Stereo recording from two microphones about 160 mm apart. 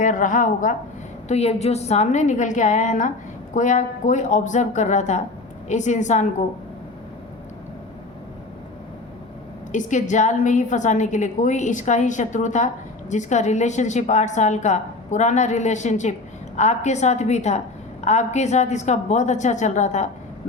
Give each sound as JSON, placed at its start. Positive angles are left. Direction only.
{"t": 0.0, "sound": "a woman's voice", "side_deg": 55}
{"t": 1.3, "sound": "a woman's voice", "side_deg": 40}
{"t": 9.7, "sound": "a woman's voice", "side_deg": 50}